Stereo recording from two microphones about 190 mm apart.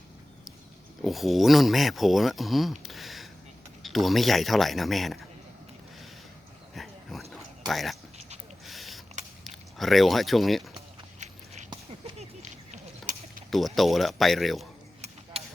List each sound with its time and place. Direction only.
1.0 s speech: centre (ahead or behind)
6.7 s dog: centre (ahead or behind)
7.7 s speech: centre (ahead or behind)
8.6 s a sound: centre (ahead or behind)
9.4 s speech: centre (ahead or behind)
11.2 s biting: 40° right (ahead or behind)
12.4 s a sound: 40° right (ahead or behind)
13.5 s speech: centre (ahead or behind)
15.0 s a sound: 35° right (ahead or behind)